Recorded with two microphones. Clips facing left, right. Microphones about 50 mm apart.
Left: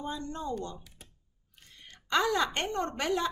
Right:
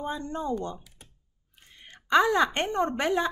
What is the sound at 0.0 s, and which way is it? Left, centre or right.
Speech, right.